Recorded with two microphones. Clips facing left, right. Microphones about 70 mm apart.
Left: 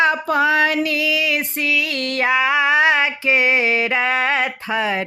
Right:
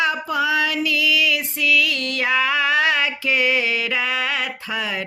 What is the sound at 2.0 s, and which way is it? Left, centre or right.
Music, left.